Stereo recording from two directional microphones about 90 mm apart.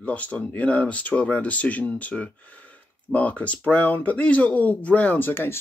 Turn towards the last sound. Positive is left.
turn(degrees=25)  # may be behind; listen again after turning